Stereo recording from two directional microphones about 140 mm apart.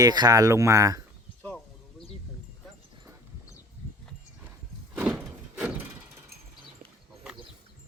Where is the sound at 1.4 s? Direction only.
10° left (ahead or behind).